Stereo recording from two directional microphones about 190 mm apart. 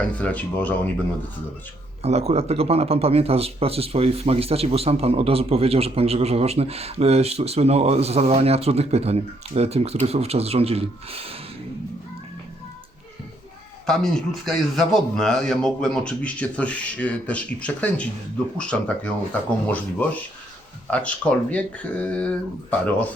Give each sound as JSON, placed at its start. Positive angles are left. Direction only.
{"t": 0.2, "sound": "speech", "side_deg": 10}
{"t": 2.0, "sound": "speech", "side_deg": -35}
{"t": 13.8, "sound": "a man's voice", "side_deg": 0}